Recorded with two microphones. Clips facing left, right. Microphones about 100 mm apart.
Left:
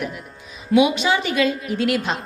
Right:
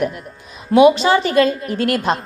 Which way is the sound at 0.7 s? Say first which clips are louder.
Right 6 dB; 40° right (ahead or behind).